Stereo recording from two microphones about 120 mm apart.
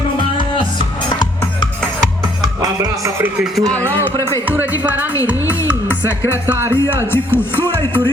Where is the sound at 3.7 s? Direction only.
20° right (ahead or behind).